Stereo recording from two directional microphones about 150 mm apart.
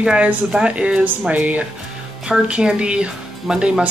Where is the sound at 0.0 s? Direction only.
5° right (ahead or behind).